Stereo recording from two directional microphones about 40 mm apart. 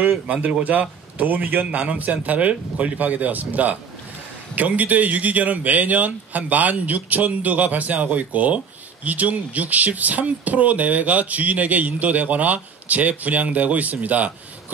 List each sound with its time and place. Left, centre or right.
0.7 s speech: right